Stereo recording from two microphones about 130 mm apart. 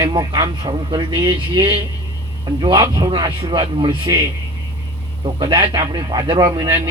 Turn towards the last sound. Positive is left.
turn(degrees=-15)  # may be behind; listen again after turning